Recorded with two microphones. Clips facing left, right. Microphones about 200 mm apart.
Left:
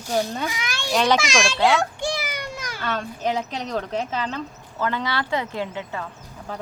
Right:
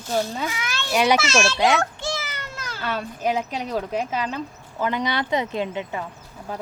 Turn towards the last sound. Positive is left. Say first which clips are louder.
# right 1 dB
turn(degrees=-10)  # may be behind; listen again after turning